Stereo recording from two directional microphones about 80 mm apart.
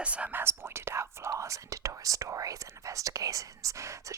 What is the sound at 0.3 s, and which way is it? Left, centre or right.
Speech, right.